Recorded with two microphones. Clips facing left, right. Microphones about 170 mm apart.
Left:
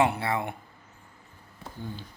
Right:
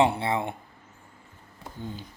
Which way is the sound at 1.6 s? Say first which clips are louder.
Right 1 dB; 20° right (ahead or behind).